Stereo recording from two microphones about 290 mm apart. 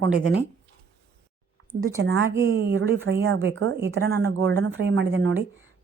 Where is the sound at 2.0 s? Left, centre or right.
Right.